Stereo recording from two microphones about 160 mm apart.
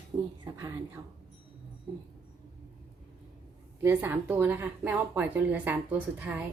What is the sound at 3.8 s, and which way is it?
Speech, 10° right (ahead or behind).